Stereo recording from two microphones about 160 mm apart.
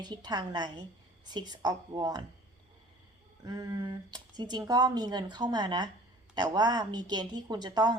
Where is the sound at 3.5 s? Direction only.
25° right (ahead or behind).